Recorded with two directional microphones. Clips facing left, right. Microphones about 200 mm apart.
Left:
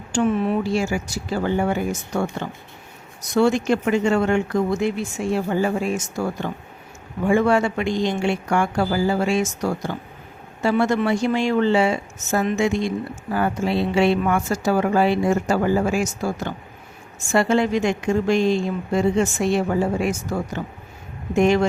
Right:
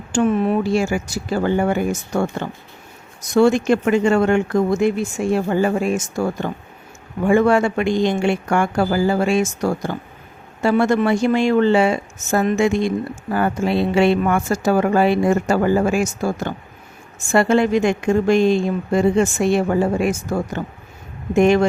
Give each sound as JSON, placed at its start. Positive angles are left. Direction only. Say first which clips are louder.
{"t": 0.1, "sound": "speech", "louder": "right 3 dB", "side_deg": -50}